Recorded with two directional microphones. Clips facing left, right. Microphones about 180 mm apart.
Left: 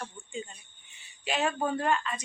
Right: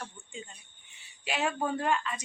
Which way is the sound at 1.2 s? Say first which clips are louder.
Left 2 dB; 10° right (ahead or behind).